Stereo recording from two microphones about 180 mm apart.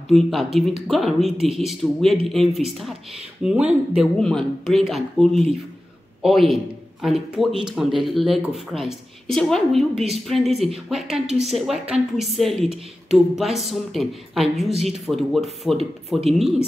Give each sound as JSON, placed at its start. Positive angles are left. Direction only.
{"t": 0.1, "sound": "a man's voice", "side_deg": 0}
{"t": 11.2, "sound": "a woman's voice", "side_deg": -35}
{"t": 11.5, "sound": "a man's voice", "side_deg": 0}